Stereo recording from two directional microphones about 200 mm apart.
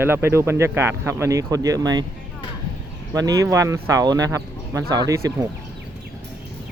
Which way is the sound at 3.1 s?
15° right (ahead or behind).